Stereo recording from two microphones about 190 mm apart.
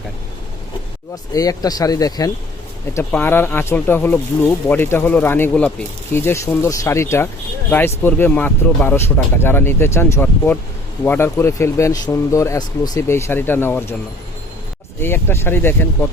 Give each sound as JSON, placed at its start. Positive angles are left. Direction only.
{"t": 1.1, "sound": "speech", "side_deg": 20}
{"t": 15.0, "sound": "speech", "side_deg": 10}